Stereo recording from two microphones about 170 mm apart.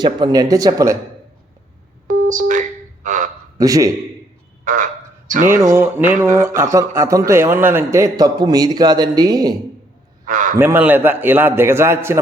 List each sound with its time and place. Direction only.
0.0 s a man's voice: 25° right (ahead or behind)
2.0 s a sound: 50° right (ahead or behind)
3.6 s a man's voice: 20° right (ahead or behind)
4.6 s frog: 50° right (ahead or behind)
5.3 s speech: 50° right (ahead or behind)
5.7 s a man's voice: 10° right (ahead or behind)
10.2 s a man's voice: 50° right (ahead or behind)
10.6 s a man's voice: 10° right (ahead or behind)